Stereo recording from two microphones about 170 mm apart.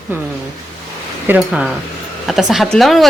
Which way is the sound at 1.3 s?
5° right (ahead or behind).